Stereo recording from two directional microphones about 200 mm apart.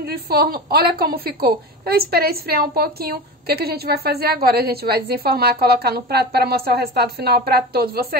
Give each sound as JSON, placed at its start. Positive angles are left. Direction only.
{"t": 0.0, "sound": "a woman's voice", "side_deg": -50}